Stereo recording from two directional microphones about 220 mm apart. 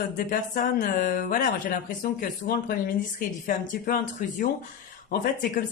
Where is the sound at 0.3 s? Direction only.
40° left (ahead or behind).